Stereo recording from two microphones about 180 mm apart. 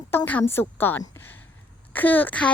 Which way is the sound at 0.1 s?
10° left (ahead or behind).